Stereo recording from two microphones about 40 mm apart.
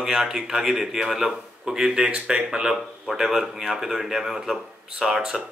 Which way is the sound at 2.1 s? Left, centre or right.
Right.